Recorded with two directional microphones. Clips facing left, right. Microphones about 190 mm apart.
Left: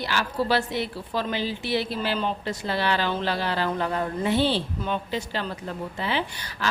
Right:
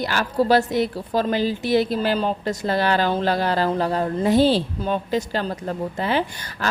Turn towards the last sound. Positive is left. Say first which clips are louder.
# right 5 dB
turn(degrees=-45)  # may be behind; listen again after turning